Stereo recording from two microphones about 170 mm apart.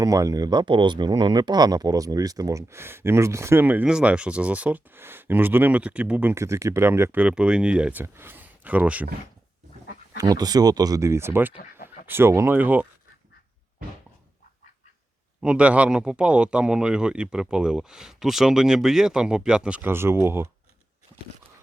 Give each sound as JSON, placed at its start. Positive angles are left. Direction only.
{"t": 0.0, "sound": "speech", "side_deg": -20}
{"t": 9.8, "sound": "dog", "side_deg": 65}
{"t": 10.2, "sound": "speech", "side_deg": -20}
{"t": 15.4, "sound": "speech", "side_deg": -5}